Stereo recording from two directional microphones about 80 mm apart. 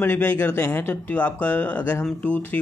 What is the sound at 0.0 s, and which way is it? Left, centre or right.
Speech, left.